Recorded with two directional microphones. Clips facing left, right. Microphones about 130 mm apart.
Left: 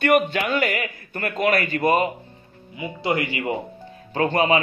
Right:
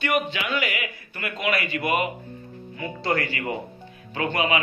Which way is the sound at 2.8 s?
20° left (ahead or behind).